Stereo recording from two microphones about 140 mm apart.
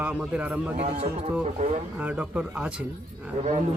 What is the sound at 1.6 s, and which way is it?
Speech, 55° right (ahead or behind).